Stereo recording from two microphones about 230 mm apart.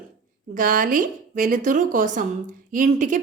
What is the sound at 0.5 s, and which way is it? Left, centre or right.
A woman's voice, right.